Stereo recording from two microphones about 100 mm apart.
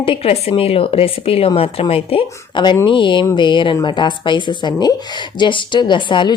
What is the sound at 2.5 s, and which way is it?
A woman's voice, 50° left (ahead or behind).